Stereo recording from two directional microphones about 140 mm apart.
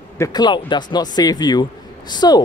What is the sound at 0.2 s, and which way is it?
A man's voice, 30° left (ahead or behind).